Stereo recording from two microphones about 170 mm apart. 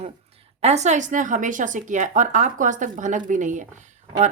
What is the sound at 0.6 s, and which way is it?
Speech, 40° right (ahead or behind).